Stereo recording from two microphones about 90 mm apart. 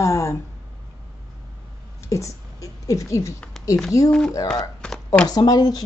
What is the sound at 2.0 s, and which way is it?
Speech, 35° left (ahead or behind).